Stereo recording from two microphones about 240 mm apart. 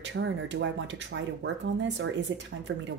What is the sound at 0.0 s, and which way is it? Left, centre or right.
Speech, right.